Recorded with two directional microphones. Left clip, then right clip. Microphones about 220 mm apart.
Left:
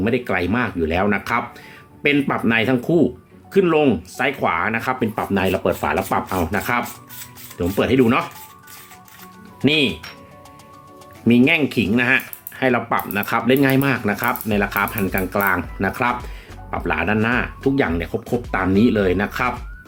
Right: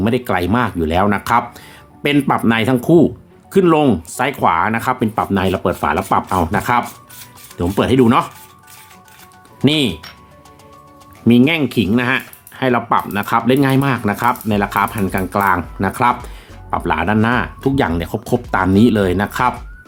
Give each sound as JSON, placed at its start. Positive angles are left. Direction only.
{"t": 0.0, "sound": "speech", "side_deg": -50}
{"t": 9.6, "sound": "speech", "side_deg": -50}
{"t": 11.3, "sound": "speech", "side_deg": -40}